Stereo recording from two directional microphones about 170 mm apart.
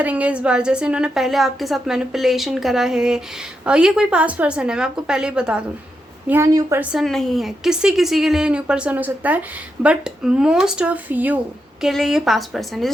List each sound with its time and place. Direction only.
0.0 s a woman's voice: 10° right (ahead or behind)
6.7 s a woman's voice: centre (ahead or behind)